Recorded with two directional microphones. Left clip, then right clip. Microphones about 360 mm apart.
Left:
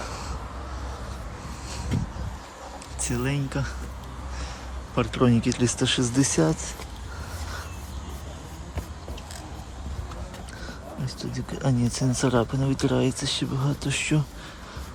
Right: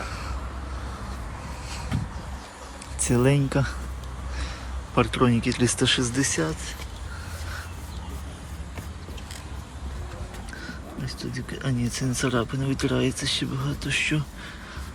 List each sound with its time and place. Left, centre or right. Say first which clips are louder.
3.0 s speech: right 7 dB; centre
4.9 s speech: right 1 dB; centre
10.7 s a sound: even; centre
11.3 s speech: left 4 dB; centre